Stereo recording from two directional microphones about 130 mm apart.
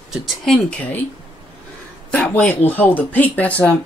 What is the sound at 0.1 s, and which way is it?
Speech, 5° left (ahead or behind).